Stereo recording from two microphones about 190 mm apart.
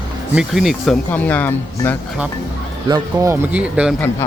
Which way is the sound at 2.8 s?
20° right (ahead or behind).